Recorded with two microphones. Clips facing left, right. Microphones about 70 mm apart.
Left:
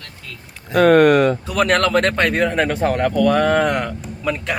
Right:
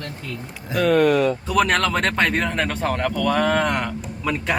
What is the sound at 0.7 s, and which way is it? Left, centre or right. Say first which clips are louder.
Speech: left 5 dB; left.